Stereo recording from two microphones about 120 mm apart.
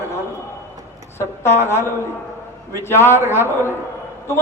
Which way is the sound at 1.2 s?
20° left (ahead or behind).